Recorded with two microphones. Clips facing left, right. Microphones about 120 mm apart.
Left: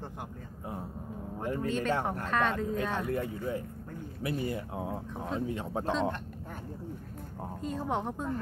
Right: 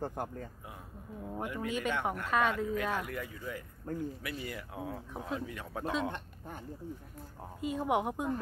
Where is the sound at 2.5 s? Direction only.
30° left (ahead or behind).